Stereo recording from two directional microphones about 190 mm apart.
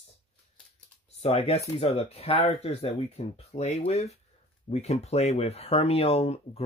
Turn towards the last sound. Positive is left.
turn(degrees=30)  # may be behind; listen again after turning